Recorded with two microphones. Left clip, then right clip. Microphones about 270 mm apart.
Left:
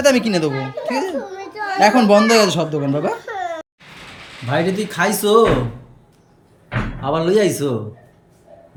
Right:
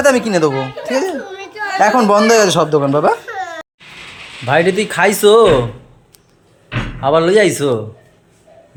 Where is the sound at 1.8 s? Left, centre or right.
Centre.